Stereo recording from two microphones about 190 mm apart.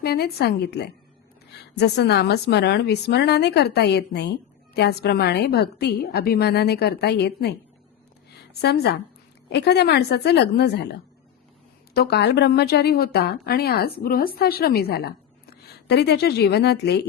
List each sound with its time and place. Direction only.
0.0 s a woman's voice: 55° left (ahead or behind)
11.9 s a woman's voice: 60° left (ahead or behind)